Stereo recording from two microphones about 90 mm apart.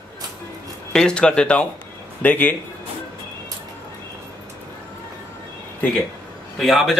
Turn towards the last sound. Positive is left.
turn(degrees=0)  # may be behind; listen again after turning